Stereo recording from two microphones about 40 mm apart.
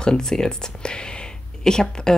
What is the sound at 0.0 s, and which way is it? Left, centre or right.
Speech, centre.